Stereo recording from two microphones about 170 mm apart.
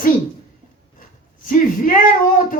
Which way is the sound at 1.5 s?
50° left (ahead or behind).